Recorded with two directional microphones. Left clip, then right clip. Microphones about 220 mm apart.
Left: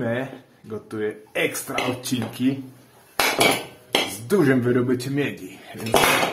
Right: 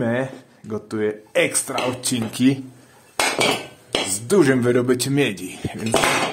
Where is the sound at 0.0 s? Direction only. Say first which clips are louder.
Right 3 dB; 40° right (ahead or behind).